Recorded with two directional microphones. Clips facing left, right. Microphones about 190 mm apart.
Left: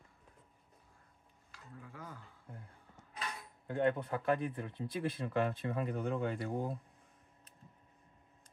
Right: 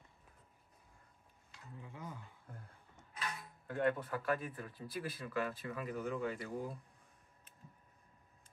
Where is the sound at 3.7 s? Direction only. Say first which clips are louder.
Left 3 dB; 25° left (ahead or behind).